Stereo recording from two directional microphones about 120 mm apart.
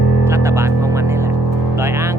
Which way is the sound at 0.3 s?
20° right (ahead or behind).